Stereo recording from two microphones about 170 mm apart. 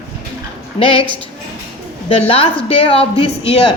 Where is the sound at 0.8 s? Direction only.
30° left (ahead or behind).